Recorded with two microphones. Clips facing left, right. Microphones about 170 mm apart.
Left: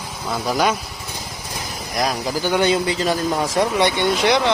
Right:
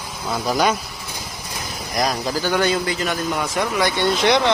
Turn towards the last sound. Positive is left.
turn(degrees=0)  # may be behind; listen again after turning